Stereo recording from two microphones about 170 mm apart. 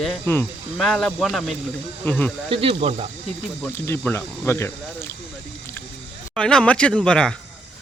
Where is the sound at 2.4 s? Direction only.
30° right (ahead or behind).